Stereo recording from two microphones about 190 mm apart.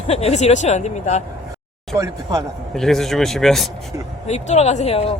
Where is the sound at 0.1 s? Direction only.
35° left (ahead or behind).